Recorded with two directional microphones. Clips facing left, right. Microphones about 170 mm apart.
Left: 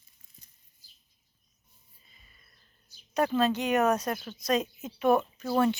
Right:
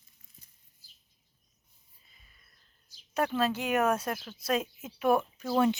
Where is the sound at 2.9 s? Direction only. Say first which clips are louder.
Left 2 dB; 90° right.